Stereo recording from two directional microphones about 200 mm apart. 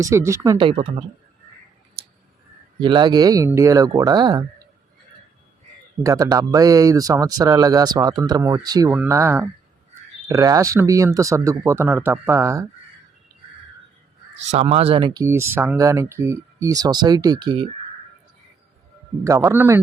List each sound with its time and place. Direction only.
0.0 s speech: 15° right (ahead or behind)
2.0 s a sound: 30° right (ahead or behind)
2.8 s speech: 20° right (ahead or behind)
6.0 s speech: 15° right (ahead or behind)
14.5 s speech: 30° right (ahead or behind)
19.2 s speech: 15° right (ahead or behind)